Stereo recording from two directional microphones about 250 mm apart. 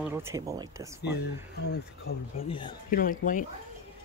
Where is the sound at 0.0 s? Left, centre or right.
Centre.